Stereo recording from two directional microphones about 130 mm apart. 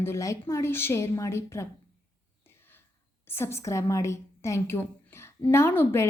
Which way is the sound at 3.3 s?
20° left (ahead or behind).